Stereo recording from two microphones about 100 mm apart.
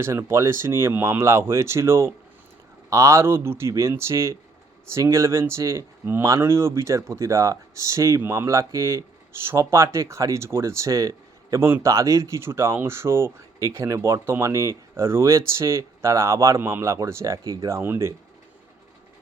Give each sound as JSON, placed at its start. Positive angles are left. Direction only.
{"t": 0.0, "sound": "speech", "side_deg": -25}